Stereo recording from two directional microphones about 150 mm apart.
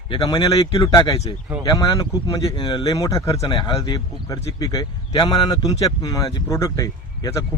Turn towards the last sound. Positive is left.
turn(degrees=20)  # may be behind; listen again after turning